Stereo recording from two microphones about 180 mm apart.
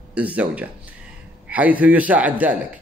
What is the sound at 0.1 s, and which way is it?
Speech, 10° right (ahead or behind).